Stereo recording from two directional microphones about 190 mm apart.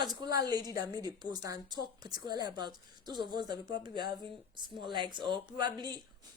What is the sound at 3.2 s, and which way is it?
Speech, 60° left (ahead or behind).